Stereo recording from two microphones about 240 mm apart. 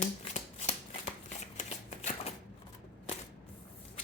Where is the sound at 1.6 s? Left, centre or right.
Left.